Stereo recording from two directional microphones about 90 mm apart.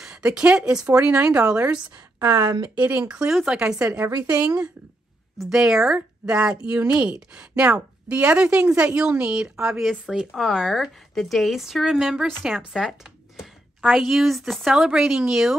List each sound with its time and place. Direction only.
0.0 s speech: 10° right (ahead or behind)
2.1 s a woman's voice: 40° right (ahead or behind)
2.7 s speech: 15° right (ahead or behind)
5.5 s a woman's voice: 10° right (ahead or behind)